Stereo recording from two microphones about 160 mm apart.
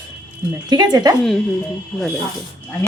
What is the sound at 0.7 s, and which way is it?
Speech, 25° right (ahead or behind).